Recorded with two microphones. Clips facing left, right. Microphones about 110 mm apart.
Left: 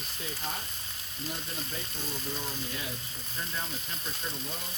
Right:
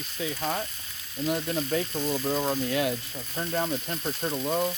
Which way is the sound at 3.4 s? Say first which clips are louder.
Right 10 dB; 60° right (ahead or behind).